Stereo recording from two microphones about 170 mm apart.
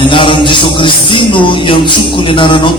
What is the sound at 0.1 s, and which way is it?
A man's voice, 30° left (ahead or behind).